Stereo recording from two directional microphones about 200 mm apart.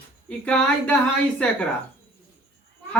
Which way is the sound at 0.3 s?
5° left (ahead or behind).